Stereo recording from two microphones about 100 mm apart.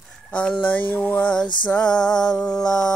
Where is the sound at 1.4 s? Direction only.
50° left (ahead or behind).